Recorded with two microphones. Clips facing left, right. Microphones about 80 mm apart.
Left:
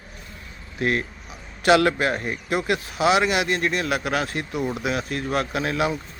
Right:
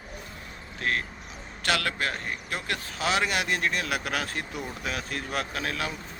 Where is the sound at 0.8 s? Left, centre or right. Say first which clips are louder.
Left 6 dB; centre.